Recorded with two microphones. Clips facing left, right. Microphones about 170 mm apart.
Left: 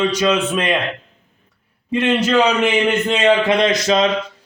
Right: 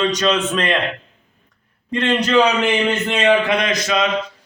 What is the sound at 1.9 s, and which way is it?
A man's voice, 5° left (ahead or behind).